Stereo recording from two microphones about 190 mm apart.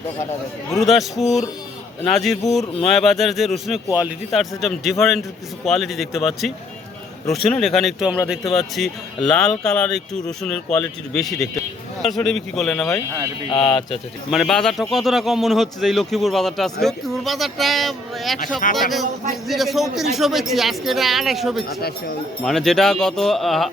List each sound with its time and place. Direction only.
0.7 s speech: centre (ahead or behind)
13.7 s speech: 25° left (ahead or behind)
14.3 s speech: centre (ahead or behind)
21.8 s speech: 55° left (ahead or behind)
22.4 s speech: centre (ahead or behind)